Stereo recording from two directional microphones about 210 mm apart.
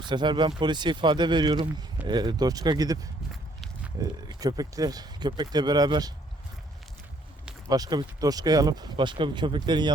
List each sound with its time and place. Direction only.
0.0 s speech: 20° right (ahead or behind)
7.7 s speech: 20° right (ahead or behind)